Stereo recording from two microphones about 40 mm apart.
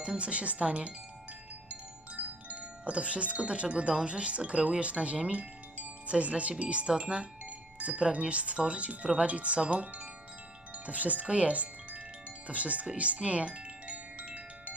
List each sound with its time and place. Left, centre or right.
0.0 s speech: right
2.1 s chime: right
4.0 s speech: right
5.3 s music: right
6.6 s speech: right
9.3 s speech: right
13.0 s music: right